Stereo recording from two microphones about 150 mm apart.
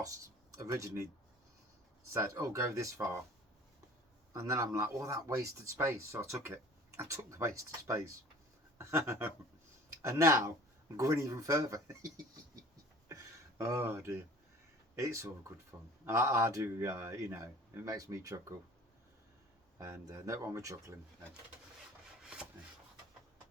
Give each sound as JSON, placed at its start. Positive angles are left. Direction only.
{"t": 0.0, "sound": "speech", "side_deg": -25}
{"t": 2.1, "sound": "speech", "side_deg": -20}
{"t": 4.4, "sound": "speech", "side_deg": -20}
{"t": 19.8, "sound": "speech", "side_deg": -20}